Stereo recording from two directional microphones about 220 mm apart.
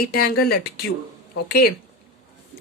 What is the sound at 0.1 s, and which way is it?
Speech, 45° left (ahead or behind).